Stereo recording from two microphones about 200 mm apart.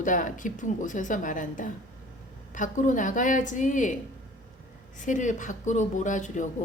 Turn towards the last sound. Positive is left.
turn(degrees=40)  # may be behind; listen again after turning